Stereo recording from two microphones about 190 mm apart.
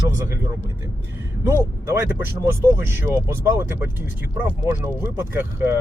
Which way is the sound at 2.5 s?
15° right (ahead or behind).